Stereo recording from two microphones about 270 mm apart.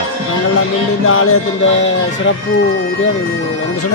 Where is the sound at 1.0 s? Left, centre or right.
Left.